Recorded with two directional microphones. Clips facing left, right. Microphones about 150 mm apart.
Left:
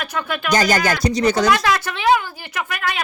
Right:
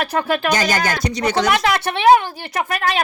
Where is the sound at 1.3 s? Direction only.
25° right (ahead or behind).